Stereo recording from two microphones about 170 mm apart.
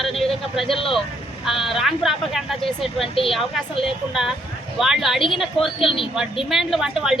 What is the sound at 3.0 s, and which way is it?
Speech, 30° left (ahead or behind).